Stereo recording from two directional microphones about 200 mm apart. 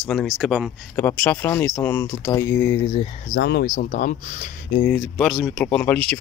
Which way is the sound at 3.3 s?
55° left (ahead or behind).